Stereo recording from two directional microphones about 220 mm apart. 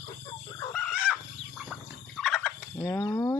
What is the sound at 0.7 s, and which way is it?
Chicken, 5° left (ahead or behind).